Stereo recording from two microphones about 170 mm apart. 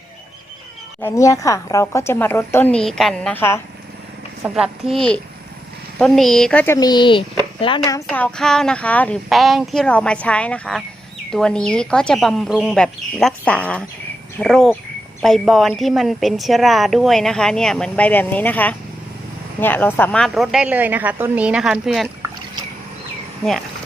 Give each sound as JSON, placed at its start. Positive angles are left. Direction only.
{"t": 1.0, "sound": "a woman's voice", "side_deg": 20}
{"t": 3.3, "sound": "a woman's voice", "side_deg": 15}
{"t": 4.4, "sound": "a woman's voice", "side_deg": -5}
{"t": 6.7, "sound": "speech", "side_deg": 25}
{"t": 8.0, "sound": "a woman's voice", "side_deg": 5}